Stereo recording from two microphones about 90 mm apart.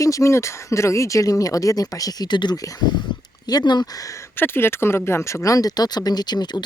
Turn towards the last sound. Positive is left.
turn(degrees=55)  # may be behind; listen again after turning